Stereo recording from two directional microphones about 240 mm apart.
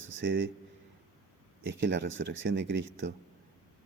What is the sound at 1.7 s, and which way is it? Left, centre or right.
Speech, right.